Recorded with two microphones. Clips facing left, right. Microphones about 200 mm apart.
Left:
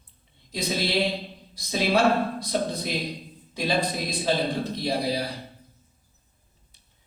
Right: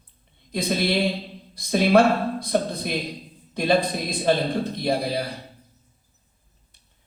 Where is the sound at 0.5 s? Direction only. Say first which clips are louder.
Right 3 dB; 55° right (ahead or behind).